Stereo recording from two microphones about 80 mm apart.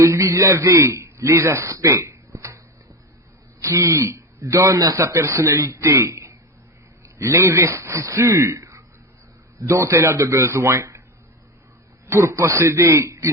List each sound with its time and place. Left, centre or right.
0.0 s a man's voice: right
3.6 s a man's voice: right
12.0 s a man's voice: right